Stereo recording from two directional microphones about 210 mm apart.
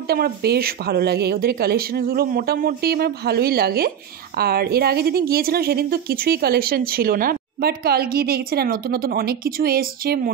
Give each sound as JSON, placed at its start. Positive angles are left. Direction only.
{"t": 0.1, "sound": "a woman's voice", "side_deg": -50}